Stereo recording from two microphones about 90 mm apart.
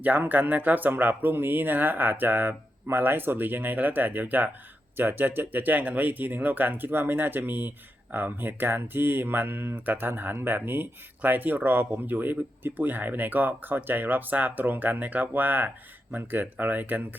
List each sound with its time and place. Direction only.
0.0 s speech: 20° right (ahead or behind)